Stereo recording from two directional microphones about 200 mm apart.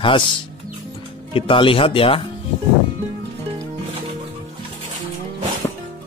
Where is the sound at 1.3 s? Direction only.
25° left (ahead or behind).